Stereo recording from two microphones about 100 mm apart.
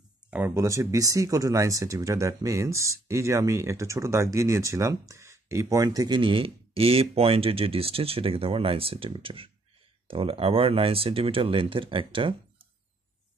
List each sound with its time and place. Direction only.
0.6 s speech: 30° right (ahead or behind); by 12.6 s 60° right (ahead or behind)